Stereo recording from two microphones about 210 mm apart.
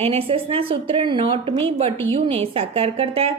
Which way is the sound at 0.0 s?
30° right (ahead or behind).